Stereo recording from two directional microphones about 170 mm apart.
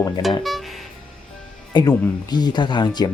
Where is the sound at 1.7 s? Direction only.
25° left (ahead or behind).